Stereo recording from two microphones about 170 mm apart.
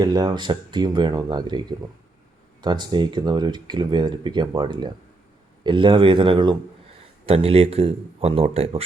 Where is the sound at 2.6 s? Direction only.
25° right (ahead or behind).